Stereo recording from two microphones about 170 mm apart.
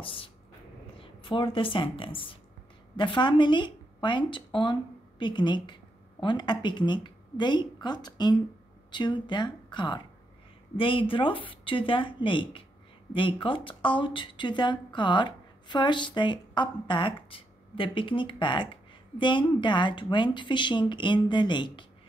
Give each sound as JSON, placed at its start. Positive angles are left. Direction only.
{"t": 0.0, "sound": "a woman's voice", "side_deg": 30}